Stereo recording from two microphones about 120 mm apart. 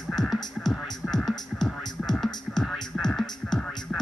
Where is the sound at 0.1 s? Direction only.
5° left (ahead or behind).